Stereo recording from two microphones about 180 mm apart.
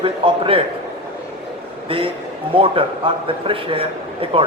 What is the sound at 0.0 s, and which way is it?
Speech, 30° right (ahead or behind).